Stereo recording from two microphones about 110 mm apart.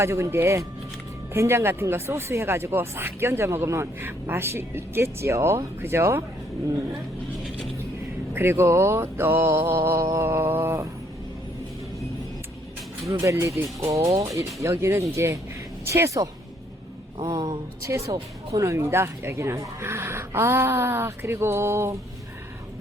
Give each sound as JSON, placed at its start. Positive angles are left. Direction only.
{"t": 0.0, "sound": "speech", "side_deg": -25}
{"t": 8.3, "sound": "speech", "side_deg": -20}
{"t": 13.1, "sound": "speech", "side_deg": -25}
{"t": 17.2, "sound": "a sound", "side_deg": -40}
{"t": 17.8, "sound": "speech", "side_deg": -25}